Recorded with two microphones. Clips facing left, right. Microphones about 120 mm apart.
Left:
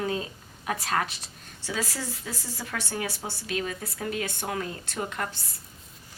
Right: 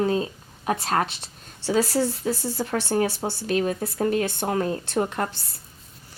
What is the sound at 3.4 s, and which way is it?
A woman's voice, 40° right (ahead or behind).